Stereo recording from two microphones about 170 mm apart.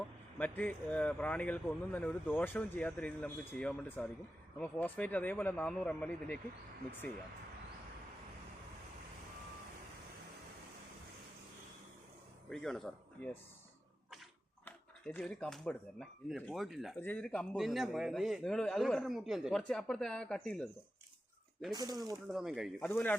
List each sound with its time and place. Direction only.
0.3 s speech: 10° left (ahead or behind)
12.5 s speech: 5° left (ahead or behind)
14.6 s a man's voice: 10° left (ahead or behind)
21.7 s speech: 25° right (ahead or behind)
22.1 s a man's voice: centre (ahead or behind)
22.8 s speech: 10° left (ahead or behind)